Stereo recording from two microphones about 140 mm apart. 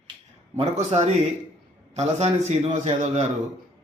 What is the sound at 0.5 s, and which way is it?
A man's voice, 55° right (ahead or behind).